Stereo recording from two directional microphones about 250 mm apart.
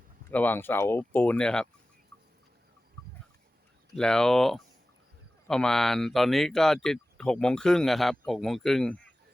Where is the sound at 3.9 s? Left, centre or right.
Centre.